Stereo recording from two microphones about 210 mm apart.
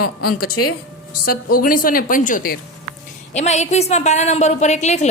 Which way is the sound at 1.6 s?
40° left (ahead or behind).